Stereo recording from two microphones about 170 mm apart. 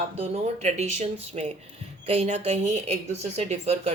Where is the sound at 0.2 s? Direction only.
40° right (ahead or behind).